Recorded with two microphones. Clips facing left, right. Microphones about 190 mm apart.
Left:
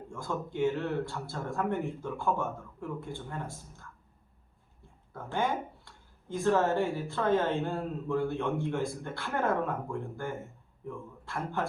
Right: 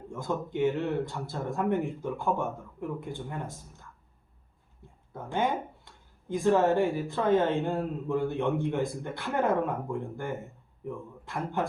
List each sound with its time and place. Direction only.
0.1 s speech: 20° right (ahead or behind)
5.1 s a man's voice: 20° right (ahead or behind)